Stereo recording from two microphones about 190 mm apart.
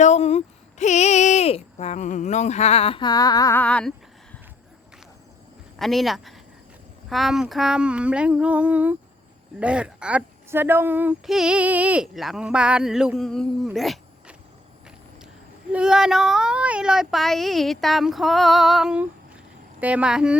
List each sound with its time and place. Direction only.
0.0 s speech: 35° left (ahead or behind); by 4.4 s 5° left (ahead or behind)
5.8 s speech: centre (ahead or behind)
13.7 s a sound: centre (ahead or behind)
15.7 s speech: 5° right (ahead or behind)